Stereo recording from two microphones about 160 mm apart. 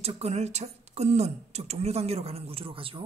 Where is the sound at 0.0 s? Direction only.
40° right (ahead or behind).